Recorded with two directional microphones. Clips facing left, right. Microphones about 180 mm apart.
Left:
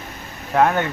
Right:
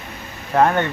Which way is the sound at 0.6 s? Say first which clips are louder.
Right 1 dB; centre (ahead or behind).